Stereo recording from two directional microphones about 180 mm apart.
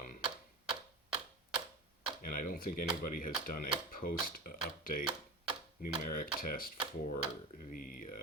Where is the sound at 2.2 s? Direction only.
50° left (ahead or behind).